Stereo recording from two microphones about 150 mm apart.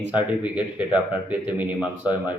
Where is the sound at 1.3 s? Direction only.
10° right (ahead or behind).